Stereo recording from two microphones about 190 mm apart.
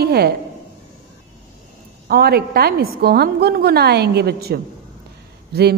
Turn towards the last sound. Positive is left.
turn(degrees=-55)  # may be behind; listen again after turning